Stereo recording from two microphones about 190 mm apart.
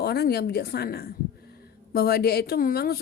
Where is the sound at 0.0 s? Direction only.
55° left (ahead or behind).